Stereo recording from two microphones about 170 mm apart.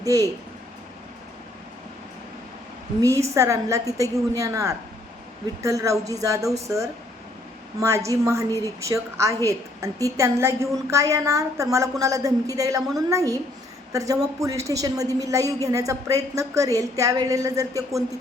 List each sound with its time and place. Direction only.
0.0 s speech: 20° right (ahead or behind)
3.0 s a woman's voice: 20° right (ahead or behind)
8.4 s speech: 15° left (ahead or behind)
8.8 s a woman's voice: 20° right (ahead or behind)